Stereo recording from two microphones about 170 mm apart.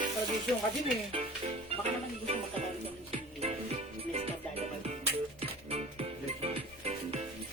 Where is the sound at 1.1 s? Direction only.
35° right (ahead or behind).